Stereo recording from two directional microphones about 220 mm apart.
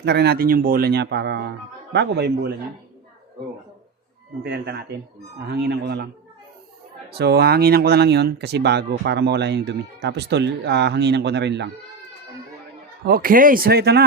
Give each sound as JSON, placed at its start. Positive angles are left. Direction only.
{"t": 0.0, "sound": "speech", "side_deg": -50}
{"t": 4.4, "sound": "speech", "side_deg": -50}
{"t": 7.1, "sound": "speech", "side_deg": -45}
{"t": 13.1, "sound": "speech", "side_deg": -40}